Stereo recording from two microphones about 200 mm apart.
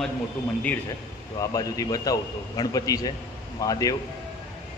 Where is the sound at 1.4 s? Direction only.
15° left (ahead or behind).